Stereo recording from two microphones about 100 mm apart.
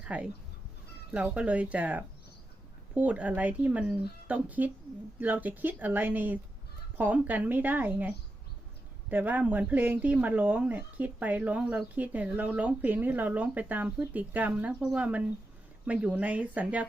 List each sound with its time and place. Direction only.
0.0 s speech: 15° right (ahead or behind)